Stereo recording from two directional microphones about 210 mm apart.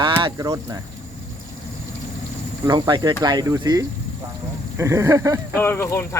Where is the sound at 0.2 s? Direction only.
20° right (ahead or behind).